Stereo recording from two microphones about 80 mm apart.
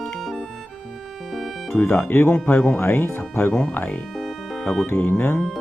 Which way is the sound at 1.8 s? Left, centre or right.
Left.